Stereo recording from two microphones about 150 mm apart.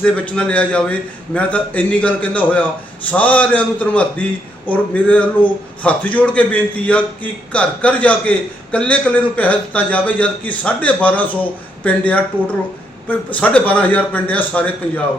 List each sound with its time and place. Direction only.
0.0 s a man's voice: 5° left (ahead or behind)